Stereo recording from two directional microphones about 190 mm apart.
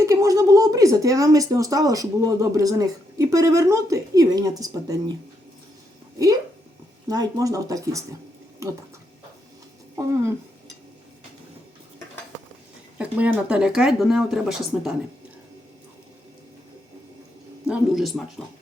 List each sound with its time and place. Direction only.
0.0 s speech: 15° right (ahead or behind)
7.1 s speech: 20° right (ahead or behind)
13.0 s speech: 5° right (ahead or behind)
17.7 s speech: centre (ahead or behind)